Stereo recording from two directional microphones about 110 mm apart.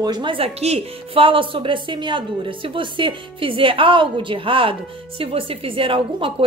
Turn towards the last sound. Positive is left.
turn(degrees=-55)  # may be behind; listen again after turning